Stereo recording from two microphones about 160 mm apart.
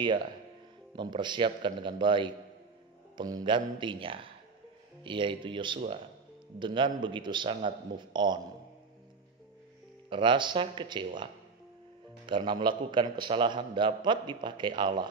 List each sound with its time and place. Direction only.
0.9 s a man's voice: 30° right (ahead or behind)
10.0 s a man's voice: 30° right (ahead or behind)
12.3 s a man's voice: 30° right (ahead or behind)